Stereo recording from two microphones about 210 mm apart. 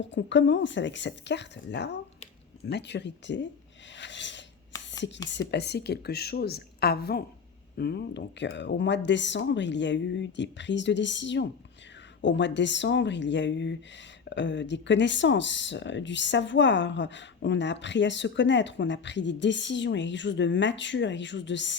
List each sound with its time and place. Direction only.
0.0 s speech: 60° left (ahead or behind)
3.9 s a sound: 60° left (ahead or behind)
4.9 s a woman's voice: 55° left (ahead or behind)